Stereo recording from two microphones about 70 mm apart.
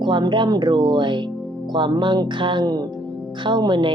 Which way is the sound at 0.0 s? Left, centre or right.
Right.